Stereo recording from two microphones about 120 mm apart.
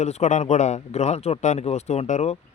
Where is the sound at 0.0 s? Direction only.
75° left (ahead or behind).